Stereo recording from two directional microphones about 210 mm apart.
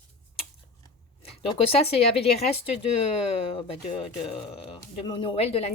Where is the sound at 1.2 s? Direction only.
30° left (ahead or behind).